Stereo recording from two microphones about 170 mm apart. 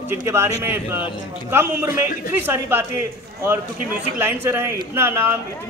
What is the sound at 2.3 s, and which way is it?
Speech, 15° right (ahead or behind).